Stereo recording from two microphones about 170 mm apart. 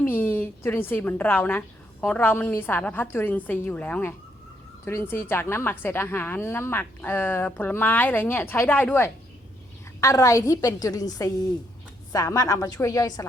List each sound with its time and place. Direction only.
0.0 s a woman's voice: 10° left (ahead or behind)